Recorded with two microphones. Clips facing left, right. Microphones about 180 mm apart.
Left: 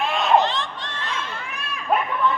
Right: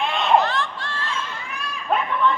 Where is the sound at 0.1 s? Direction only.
Centre (ahead or behind).